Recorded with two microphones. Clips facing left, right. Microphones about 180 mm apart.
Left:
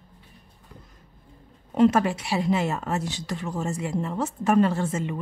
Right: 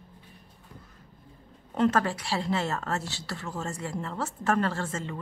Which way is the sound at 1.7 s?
10° left (ahead or behind).